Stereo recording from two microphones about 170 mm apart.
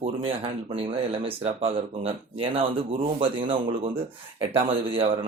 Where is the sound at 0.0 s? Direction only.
35° right (ahead or behind).